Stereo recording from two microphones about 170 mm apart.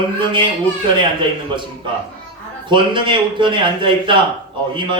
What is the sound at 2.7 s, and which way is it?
Speech, 30° right (ahead or behind).